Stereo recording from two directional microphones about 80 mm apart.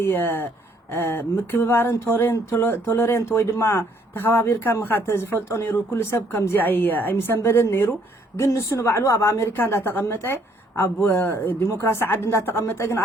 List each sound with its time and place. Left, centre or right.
0.0 s speech: left
8.4 s a woman's voice: left